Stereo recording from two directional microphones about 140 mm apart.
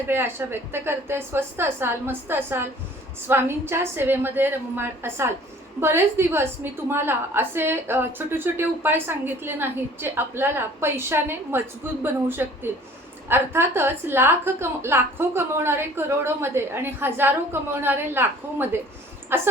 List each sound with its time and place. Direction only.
0.1 s a woman's voice: 15° right (ahead or behind)